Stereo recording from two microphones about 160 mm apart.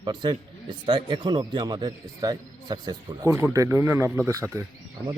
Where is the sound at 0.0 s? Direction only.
30° right (ahead or behind).